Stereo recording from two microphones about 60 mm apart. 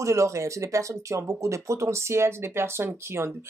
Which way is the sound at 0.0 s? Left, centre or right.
Right.